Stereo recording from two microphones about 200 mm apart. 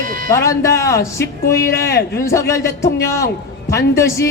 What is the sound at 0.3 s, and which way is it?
Speech, 15° left (ahead or behind).